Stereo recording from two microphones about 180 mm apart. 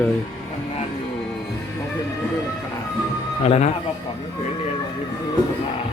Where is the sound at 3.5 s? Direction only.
40° left (ahead or behind).